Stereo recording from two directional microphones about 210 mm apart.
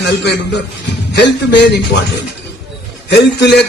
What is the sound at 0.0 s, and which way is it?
Speech, 55° left (ahead or behind).